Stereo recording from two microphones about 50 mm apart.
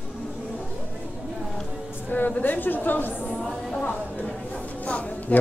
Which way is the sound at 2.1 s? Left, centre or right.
Left.